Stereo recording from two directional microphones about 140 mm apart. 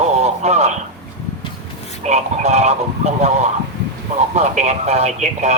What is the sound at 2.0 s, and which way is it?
Speech, 50° right (ahead or behind).